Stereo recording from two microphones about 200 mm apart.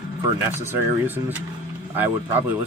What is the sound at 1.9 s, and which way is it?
Speech, 10° right (ahead or behind).